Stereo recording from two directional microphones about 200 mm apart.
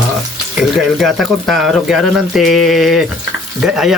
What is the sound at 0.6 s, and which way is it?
Speech, centre (ahead or behind).